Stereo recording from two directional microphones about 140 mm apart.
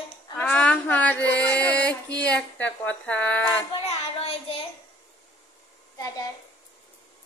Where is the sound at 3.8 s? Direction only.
45° left (ahead or behind).